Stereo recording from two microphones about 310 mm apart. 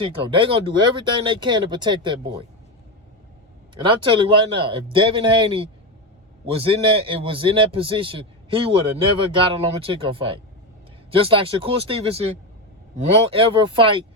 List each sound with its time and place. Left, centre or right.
0.1 s a man's voice: centre
3.8 s a man's voice: centre